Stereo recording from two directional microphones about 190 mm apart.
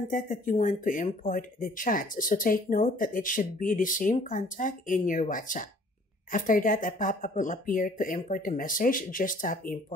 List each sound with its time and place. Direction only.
0.1 s speech: 45° left (ahead or behind)